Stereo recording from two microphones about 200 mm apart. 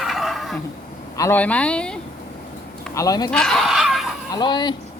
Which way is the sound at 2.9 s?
20° left (ahead or behind).